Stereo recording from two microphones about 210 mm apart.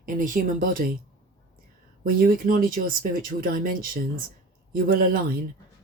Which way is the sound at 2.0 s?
40° right (ahead or behind).